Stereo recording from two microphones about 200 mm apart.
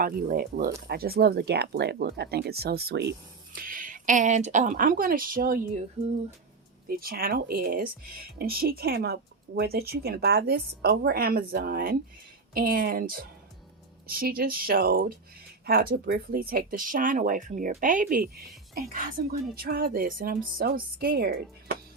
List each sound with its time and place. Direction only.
0.0 s speech: 45° right (ahead or behind)
6.8 s speech: 45° right (ahead or behind)